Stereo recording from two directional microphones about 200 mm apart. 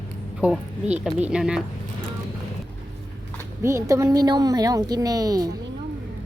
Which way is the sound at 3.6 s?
15° right (ahead or behind).